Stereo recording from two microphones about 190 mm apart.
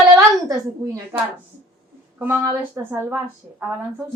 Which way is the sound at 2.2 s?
10° right (ahead or behind).